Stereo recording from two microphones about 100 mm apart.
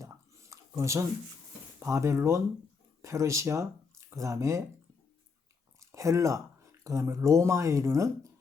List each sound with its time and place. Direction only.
0.0 s a sound: 30° right (ahead or behind)
1.8 s speech: 30° right (ahead or behind)
5.8 s speech: 30° right (ahead or behind)